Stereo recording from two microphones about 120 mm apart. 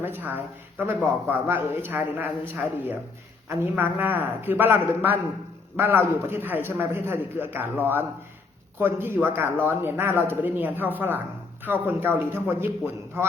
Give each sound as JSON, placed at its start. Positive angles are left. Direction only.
{"t": 0.0, "sound": "a man's voice", "side_deg": -15}